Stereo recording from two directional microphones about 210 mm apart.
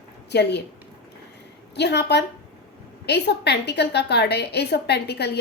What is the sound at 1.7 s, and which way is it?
A woman's voice, 55° left (ahead or behind).